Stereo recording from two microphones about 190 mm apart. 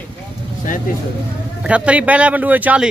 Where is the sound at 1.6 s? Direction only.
5° right (ahead or behind).